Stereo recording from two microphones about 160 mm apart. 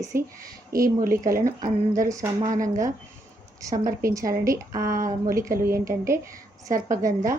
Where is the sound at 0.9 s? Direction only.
60° right (ahead or behind).